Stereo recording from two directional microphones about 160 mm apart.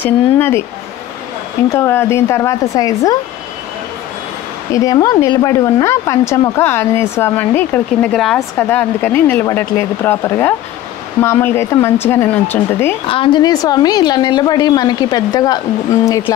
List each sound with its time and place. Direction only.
0.0 s speech: 15° left (ahead or behind)
1.7 s a woman's voice: 15° left (ahead or behind)
4.7 s a woman's voice: 20° left (ahead or behind)
8.1 s speech: centre (ahead or behind)
13.1 s a woman's voice: 30° left (ahead or behind)